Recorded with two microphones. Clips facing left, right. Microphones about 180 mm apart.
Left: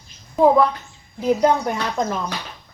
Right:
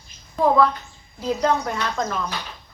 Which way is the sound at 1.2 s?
20° left (ahead or behind).